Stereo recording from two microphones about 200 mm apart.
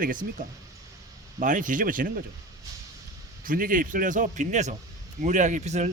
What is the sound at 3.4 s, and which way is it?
A man's voice, 45° right (ahead or behind).